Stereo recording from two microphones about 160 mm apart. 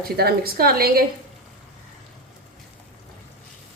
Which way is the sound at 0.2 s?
75° right (ahead or behind).